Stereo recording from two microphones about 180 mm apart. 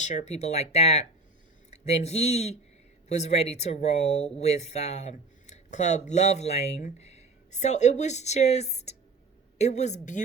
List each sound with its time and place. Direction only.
0.0 s speech: 40° left (ahead or behind)